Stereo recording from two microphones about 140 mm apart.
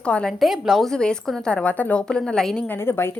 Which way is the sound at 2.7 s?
15° left (ahead or behind).